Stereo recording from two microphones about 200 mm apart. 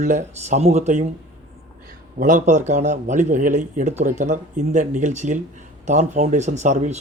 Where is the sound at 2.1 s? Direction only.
40° right (ahead or behind).